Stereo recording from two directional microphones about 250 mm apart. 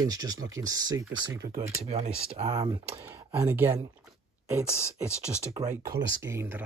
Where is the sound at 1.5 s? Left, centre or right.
Right.